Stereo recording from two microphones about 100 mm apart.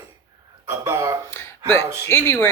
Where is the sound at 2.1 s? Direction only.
30° left (ahead or behind).